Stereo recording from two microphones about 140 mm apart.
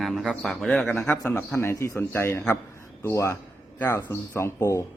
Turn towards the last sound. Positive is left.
turn(degrees=20)  # may be behind; listen again after turning